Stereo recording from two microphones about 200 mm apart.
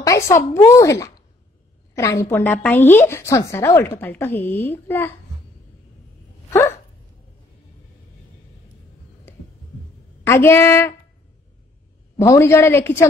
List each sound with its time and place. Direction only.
0.0 s a sound: 15° left (ahead or behind)
0.7 s a woman's voice: 15° left (ahead or behind)
10.2 s speech: 15° left (ahead or behind)
12.2 s speech: 15° left (ahead or behind)